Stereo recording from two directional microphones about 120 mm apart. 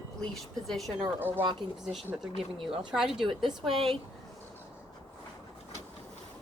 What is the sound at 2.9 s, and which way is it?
A woman's voice, 5° right (ahead or behind).